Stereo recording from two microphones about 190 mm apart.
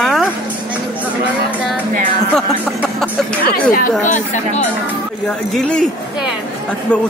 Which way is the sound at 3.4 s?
50° left (ahead or behind).